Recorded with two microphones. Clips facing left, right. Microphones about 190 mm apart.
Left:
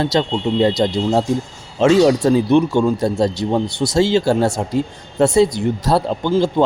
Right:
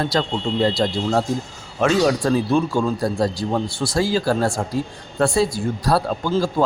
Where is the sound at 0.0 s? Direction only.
25° left (ahead or behind).